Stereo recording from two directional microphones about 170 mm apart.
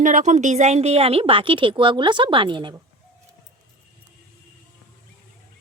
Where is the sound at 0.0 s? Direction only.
45° right (ahead or behind); by 2.7 s 30° right (ahead or behind).